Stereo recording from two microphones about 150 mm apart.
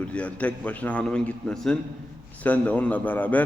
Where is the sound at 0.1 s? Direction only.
10° left (ahead or behind).